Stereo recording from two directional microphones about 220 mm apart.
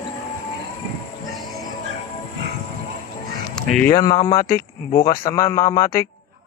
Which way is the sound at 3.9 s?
20° left (ahead or behind).